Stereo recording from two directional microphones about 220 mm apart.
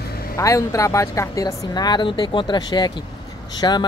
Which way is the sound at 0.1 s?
45° left (ahead or behind).